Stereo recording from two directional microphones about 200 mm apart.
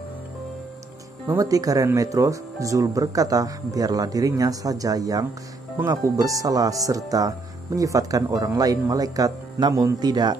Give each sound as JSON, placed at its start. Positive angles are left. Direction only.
{"t": 1.3, "sound": "speech", "side_deg": -15}